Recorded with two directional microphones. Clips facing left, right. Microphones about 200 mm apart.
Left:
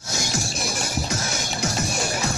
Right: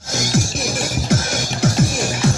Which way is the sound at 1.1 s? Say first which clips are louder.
Right 8 dB; 90° right.